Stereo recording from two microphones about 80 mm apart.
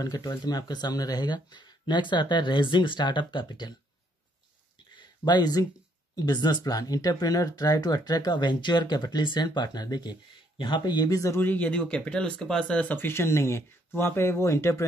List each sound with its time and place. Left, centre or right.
0.0 s speech: left
5.2 s speech: left
10.6 s speech: left
11.3 s speech: left